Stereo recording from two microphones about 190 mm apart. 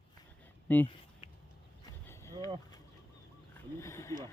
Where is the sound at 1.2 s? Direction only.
25° left (ahead or behind).